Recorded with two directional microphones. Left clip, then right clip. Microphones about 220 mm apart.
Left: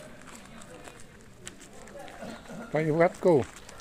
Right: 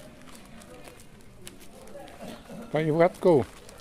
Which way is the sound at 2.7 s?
20° right (ahead or behind).